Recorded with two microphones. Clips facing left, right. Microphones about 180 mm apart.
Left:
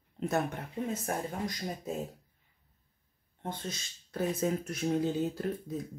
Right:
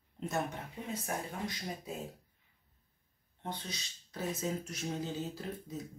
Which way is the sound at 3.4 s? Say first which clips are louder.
Left 3 dB; 50° left (ahead or behind).